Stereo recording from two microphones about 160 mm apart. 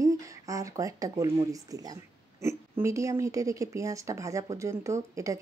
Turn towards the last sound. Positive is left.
turn(degrees=-20)  # may be behind; listen again after turning